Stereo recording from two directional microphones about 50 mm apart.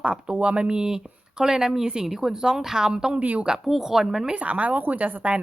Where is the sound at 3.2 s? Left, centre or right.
Right.